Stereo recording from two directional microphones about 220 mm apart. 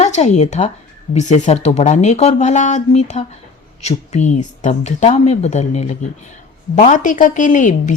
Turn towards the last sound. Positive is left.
turn(degrees=35)  # may be behind; listen again after turning